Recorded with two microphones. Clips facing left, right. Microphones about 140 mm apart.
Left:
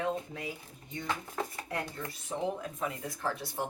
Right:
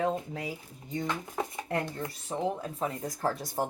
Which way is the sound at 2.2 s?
35° right (ahead or behind).